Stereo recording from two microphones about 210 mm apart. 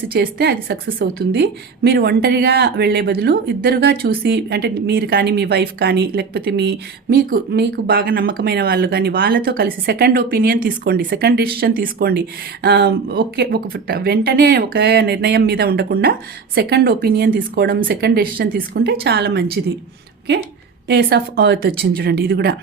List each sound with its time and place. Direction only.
0.1 s a woman's voice: 50° right (ahead or behind)
20.8 s a woman's voice: 50° right (ahead or behind)